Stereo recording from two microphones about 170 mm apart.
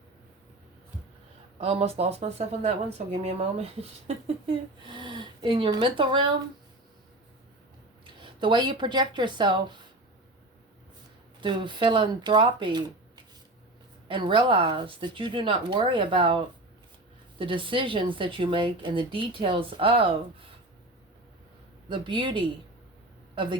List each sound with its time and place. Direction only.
1.5 s speech: 35° right (ahead or behind)
8.0 s speech: 30° right (ahead or behind)
11.3 s speech: 25° right (ahead or behind)
14.1 s speech: 30° right (ahead or behind)
21.8 s speech: 30° right (ahead or behind)